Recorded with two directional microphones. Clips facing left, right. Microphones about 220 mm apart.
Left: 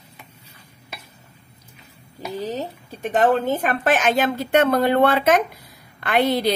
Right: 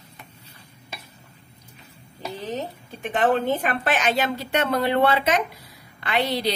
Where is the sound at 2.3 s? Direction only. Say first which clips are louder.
Left 3 dB; 40° left (ahead or behind).